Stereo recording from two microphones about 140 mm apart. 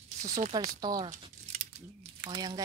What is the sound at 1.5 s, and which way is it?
Scissors, 50° right (ahead or behind).